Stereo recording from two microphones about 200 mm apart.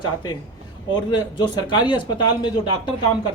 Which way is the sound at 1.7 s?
20° left (ahead or behind).